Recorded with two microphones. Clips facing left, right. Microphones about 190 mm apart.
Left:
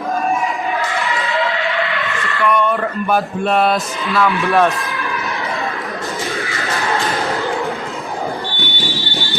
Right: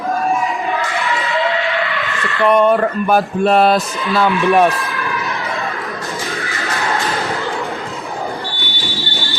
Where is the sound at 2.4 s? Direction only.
35° right (ahead or behind).